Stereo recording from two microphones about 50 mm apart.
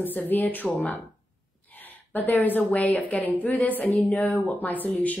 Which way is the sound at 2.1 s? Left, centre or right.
Left.